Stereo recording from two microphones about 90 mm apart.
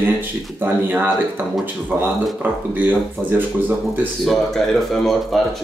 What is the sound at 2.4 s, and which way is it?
Speech, 20° right (ahead or behind).